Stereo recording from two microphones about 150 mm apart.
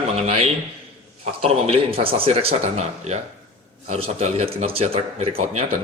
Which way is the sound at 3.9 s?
40° right (ahead or behind).